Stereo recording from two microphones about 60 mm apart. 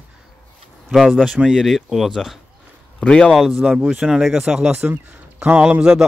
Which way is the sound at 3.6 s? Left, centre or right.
Centre.